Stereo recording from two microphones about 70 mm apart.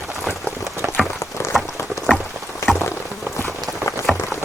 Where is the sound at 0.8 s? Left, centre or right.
Right.